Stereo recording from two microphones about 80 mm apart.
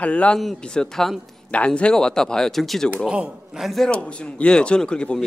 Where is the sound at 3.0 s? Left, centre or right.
Centre.